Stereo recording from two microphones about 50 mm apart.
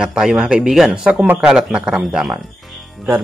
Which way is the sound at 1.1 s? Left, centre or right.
Right.